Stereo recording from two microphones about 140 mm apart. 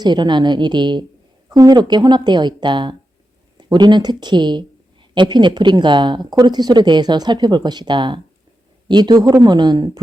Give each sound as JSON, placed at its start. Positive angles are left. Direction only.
{"t": 0.0, "sound": "speech", "side_deg": -30}